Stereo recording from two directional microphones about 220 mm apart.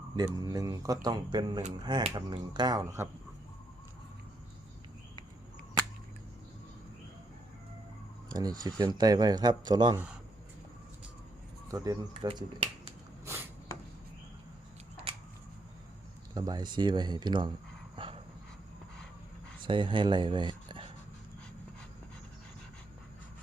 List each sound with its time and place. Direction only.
0.3 s speech: 15° right (ahead or behind)
8.3 s a sound: 15° right (ahead or behind)
8.6 s speech: 20° right (ahead or behind)
11.7 s speech: 15° right (ahead or behind)
13.7 s a sound: 15° left (ahead or behind)
16.3 s speech: 20° right (ahead or behind)
17.9 s dog: 25° right (ahead or behind)
19.6 s speech: 20° right (ahead or behind)